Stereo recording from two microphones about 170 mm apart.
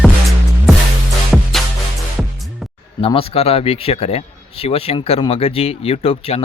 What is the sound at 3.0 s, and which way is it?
Speech, 35° left (ahead or behind).